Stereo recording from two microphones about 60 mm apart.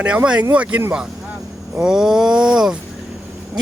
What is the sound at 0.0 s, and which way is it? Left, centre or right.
Speech, right.